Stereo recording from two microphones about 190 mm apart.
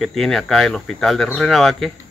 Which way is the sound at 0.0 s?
Centre (ahead or behind).